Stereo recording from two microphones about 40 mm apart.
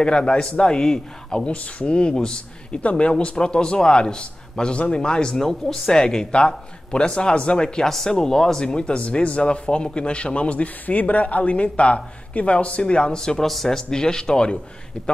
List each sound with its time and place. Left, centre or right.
0.0 s speech: left
1.4 s speech: left
5.4 s speech: centre